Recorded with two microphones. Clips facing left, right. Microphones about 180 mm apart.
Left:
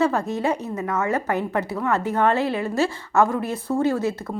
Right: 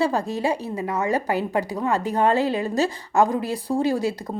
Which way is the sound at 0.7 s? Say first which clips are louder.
Even; 15° right (ahead or behind).